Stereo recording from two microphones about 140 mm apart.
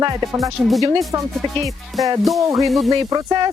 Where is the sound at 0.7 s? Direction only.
Centre (ahead or behind).